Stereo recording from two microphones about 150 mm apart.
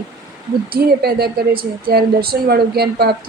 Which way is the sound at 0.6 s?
90° right.